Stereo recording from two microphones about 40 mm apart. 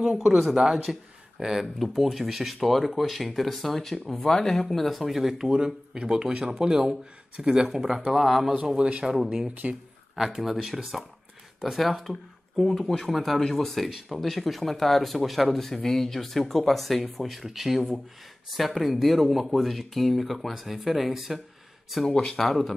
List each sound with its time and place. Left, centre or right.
0.9 s speech: centre
5.5 s speech: right
7.6 s speech: centre
8.7 s speech: right
9.1 s speech: centre
9.5 s speech: right
10.1 s speech: centre
22.0 s speech: centre